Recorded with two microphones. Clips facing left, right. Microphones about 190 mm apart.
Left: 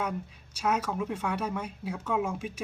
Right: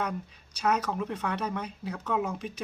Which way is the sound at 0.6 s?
5° left (ahead or behind).